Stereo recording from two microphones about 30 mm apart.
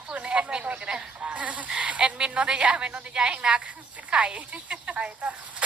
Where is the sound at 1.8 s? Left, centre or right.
Right.